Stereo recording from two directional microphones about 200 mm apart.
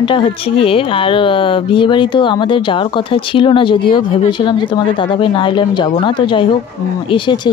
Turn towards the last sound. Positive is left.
turn(degrees=25)  # may be behind; listen again after turning